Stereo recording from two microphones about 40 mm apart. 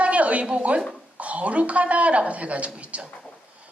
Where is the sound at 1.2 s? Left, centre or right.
Right.